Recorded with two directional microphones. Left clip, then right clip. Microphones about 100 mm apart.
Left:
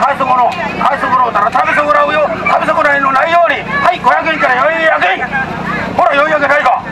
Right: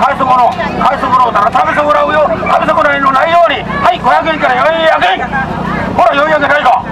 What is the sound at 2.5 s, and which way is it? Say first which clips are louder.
Speech: even; 15° left (ahead or behind).